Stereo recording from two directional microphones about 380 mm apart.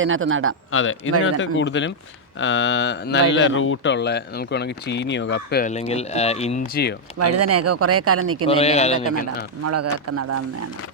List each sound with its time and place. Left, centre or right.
0.0 s speech: right
0.7 s speech: left
7.2 s speech: right
8.4 s a man's voice: centre
9.6 s speech: right